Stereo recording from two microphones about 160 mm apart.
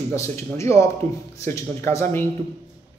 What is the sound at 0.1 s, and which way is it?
A man's voice, 20° left (ahead or behind).